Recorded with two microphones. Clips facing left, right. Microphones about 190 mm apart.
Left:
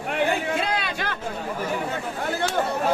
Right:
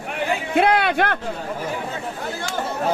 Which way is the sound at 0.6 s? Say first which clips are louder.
Right 9 dB; 60° right (ahead or behind).